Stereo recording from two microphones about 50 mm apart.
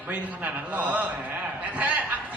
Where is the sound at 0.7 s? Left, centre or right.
Right.